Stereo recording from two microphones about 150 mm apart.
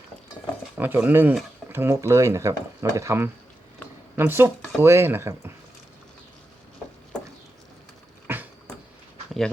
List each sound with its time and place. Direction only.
0.8 s speech: 10° right (ahead or behind)
8.3 s cat: 15° right (ahead or behind)